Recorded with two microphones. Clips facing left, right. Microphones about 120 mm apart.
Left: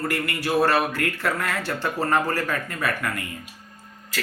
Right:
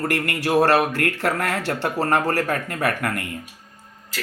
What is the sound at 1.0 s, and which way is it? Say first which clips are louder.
Speech: right 3 dB; 80° right.